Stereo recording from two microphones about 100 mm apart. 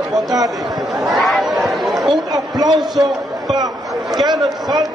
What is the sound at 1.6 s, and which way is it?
Chatter, centre (ahead or behind).